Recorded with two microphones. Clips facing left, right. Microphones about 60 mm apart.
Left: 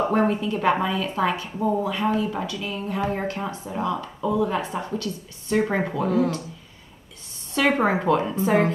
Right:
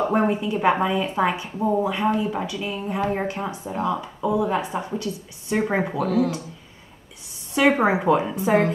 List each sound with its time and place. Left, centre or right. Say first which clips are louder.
0.1 s speech: even; centre
5.9 s speech: left 1 dB; centre
7.5 s speech: right 2 dB; centre